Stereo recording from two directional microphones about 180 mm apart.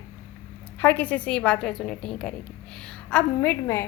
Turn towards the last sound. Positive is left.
turn(degrees=15)  # may be behind; listen again after turning